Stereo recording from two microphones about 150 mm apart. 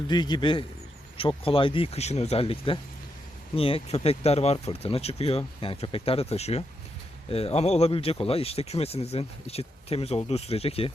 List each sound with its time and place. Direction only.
0.1 s a man's voice: 30° left (ahead or behind)